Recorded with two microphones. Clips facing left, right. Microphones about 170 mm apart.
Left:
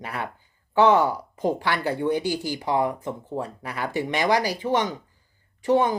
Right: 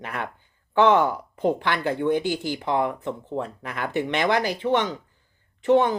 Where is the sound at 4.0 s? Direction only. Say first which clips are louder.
Right 2 dB; 60° right (ahead or behind).